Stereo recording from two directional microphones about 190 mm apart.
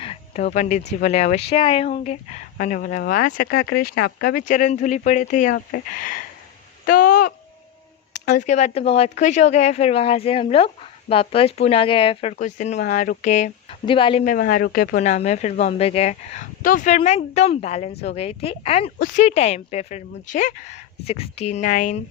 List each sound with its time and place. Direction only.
0.0 s speech: 30° left (ahead or behind)
12.4 s speech: 40° left (ahead or behind)
14.3 s speech: 45° left (ahead or behind); by 18.9 s 30° left (ahead or behind)
18.9 s speech: 45° left (ahead or behind)